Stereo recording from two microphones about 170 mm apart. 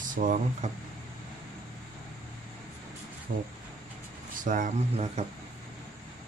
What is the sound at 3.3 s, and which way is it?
Speech, 55° right (ahead or behind).